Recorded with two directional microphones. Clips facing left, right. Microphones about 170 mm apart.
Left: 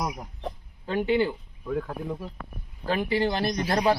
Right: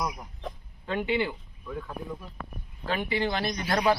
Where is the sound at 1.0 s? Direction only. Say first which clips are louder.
Left 5 dB; 40° left (ahead or behind).